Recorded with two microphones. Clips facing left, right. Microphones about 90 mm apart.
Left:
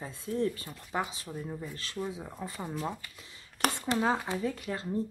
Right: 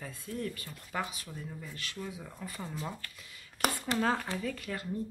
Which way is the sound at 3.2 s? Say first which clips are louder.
Left 1 dB; 25° left (ahead or behind).